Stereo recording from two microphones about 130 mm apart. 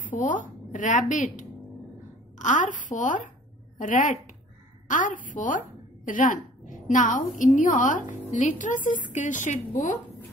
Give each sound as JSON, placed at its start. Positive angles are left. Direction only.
{"t": 0.2, "sound": "a woman's voice", "side_deg": 80}
{"t": 2.3, "sound": "a woman's voice", "side_deg": 75}